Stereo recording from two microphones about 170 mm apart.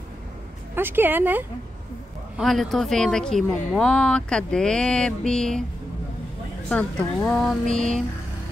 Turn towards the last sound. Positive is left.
turn(degrees=-50)  # may be behind; listen again after turning